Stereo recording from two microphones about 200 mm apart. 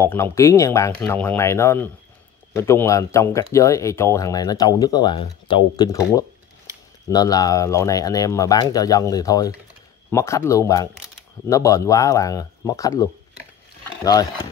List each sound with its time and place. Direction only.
0.0 s speech: 15° left (ahead or behind)